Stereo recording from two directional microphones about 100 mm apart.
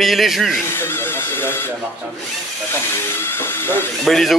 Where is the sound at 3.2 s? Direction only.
25° left (ahead or behind).